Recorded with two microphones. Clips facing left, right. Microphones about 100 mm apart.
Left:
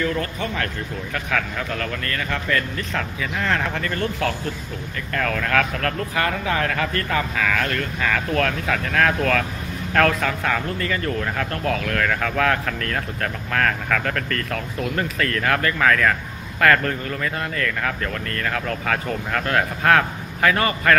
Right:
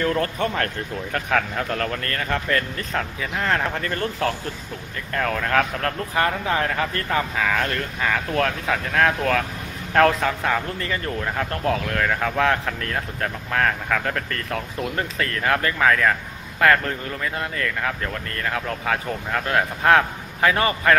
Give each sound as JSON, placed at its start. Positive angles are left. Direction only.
{"t": 0.0, "sound": "a man's voice", "side_deg": -45}